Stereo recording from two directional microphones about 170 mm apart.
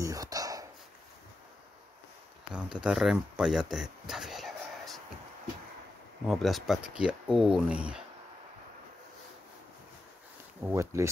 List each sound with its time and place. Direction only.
0.0 s dog: 20° right (ahead or behind)
2.5 s speech: 5° right (ahead or behind)
6.2 s speech: centre (ahead or behind)
10.6 s speech: 15° right (ahead or behind)